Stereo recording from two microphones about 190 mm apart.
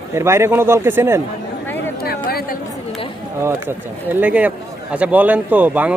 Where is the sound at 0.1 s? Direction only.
15° right (ahead or behind).